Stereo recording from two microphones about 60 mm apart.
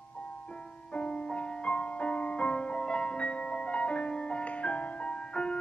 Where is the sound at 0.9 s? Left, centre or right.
Centre.